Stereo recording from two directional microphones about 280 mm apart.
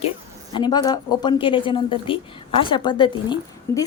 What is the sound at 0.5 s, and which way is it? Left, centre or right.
A woman's voice, centre.